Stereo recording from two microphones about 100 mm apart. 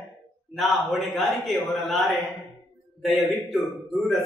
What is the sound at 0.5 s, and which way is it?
A man's voice, centre (ahead or behind).